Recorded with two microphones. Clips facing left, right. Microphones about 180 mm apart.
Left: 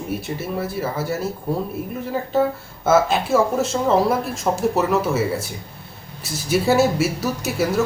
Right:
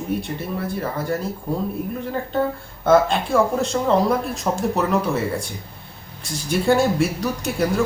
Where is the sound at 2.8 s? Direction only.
5° left (ahead or behind).